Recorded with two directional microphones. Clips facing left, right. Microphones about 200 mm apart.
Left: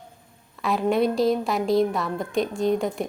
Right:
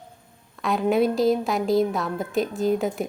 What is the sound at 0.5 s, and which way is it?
A woman's voice, centre (ahead or behind).